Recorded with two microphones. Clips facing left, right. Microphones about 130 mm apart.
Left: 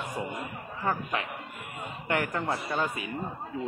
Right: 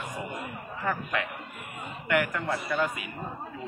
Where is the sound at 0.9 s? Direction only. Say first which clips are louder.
Even; 30° left (ahead or behind).